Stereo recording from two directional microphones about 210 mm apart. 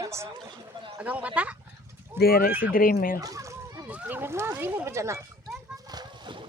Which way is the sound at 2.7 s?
40° left (ahead or behind).